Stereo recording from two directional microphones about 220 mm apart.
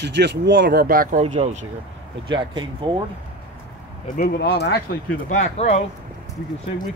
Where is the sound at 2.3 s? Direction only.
20° right (ahead or behind).